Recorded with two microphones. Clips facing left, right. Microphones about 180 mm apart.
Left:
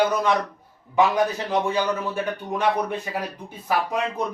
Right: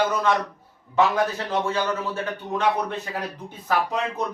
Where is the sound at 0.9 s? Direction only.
15° left (ahead or behind).